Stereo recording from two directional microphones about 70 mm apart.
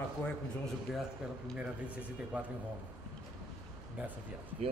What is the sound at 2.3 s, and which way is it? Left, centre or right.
Speech, centre.